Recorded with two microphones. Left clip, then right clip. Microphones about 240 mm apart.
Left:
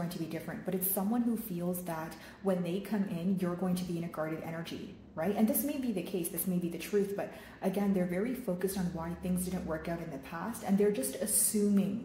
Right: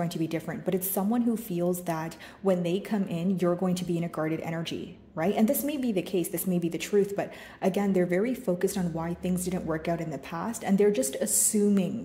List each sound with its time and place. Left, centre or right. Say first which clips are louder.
0.3 s a woman's voice: right 7 dB; right